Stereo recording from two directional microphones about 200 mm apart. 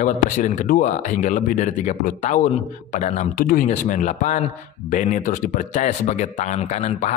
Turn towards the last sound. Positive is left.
turn(degrees=35)  # may be behind; listen again after turning